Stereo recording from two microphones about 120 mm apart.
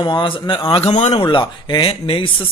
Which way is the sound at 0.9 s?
75° left (ahead or behind).